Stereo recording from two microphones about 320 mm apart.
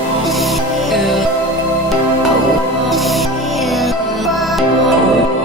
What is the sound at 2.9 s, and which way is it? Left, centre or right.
Music, centre.